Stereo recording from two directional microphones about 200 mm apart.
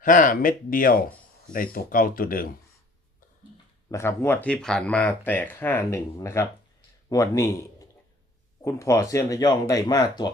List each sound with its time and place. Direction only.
0.0 s speech: 40° left (ahead or behind)
3.9 s a man's voice: 10° left (ahead or behind)